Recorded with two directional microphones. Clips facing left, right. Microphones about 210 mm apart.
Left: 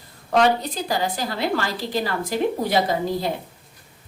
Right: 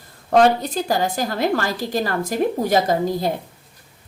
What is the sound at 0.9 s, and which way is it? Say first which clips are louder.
A woman's voice: right 3 dB; 45° right (ahead or behind).